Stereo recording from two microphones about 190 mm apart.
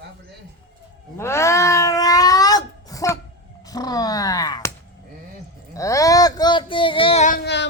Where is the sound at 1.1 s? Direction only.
15° left (ahead or behind).